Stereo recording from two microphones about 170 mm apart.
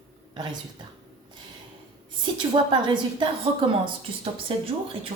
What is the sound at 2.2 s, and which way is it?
A woman's voice, 25° right (ahead or behind).